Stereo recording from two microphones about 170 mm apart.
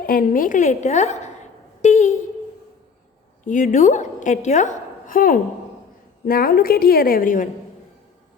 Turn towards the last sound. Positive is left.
turn(degrees=55)  # may be behind; listen again after turning